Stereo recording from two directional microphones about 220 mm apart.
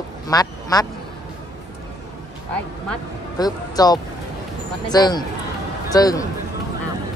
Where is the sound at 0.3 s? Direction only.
15° left (ahead or behind).